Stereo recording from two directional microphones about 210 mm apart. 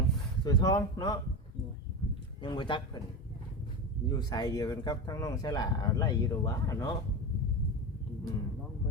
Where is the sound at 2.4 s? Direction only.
20° left (ahead or behind).